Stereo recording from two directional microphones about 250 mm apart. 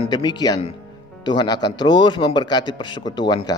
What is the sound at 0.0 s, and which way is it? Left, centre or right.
A man's voice, centre.